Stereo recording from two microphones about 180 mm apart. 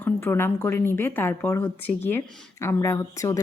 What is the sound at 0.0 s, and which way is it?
A woman's voice, 15° left (ahead or behind).